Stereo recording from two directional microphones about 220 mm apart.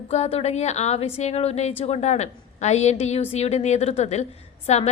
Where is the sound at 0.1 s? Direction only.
30° left (ahead or behind).